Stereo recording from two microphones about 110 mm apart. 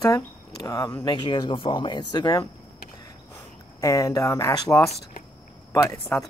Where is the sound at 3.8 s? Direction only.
30° left (ahead or behind).